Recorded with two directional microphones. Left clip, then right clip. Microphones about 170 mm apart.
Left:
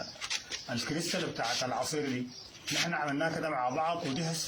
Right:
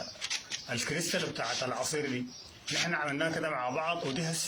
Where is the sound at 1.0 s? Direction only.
15° right (ahead or behind).